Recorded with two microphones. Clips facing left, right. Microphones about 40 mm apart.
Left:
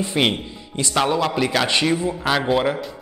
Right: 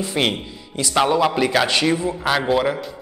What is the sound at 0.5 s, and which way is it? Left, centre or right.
Music, centre.